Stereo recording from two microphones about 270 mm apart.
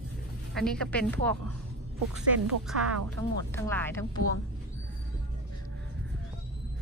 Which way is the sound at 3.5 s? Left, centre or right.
Centre.